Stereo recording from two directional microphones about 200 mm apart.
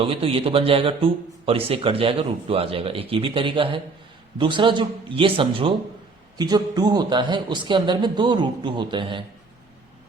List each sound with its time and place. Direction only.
0.0 s a man's voice: 25° right (ahead or behind)